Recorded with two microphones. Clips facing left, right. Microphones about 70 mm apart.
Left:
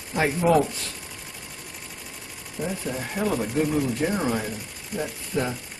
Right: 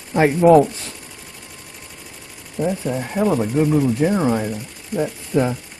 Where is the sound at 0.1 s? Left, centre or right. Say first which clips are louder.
Right 9 dB; right.